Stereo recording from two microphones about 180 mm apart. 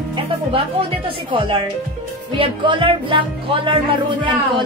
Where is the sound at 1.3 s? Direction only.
25° right (ahead or behind).